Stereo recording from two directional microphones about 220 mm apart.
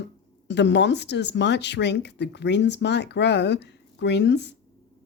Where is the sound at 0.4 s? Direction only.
50° left (ahead or behind).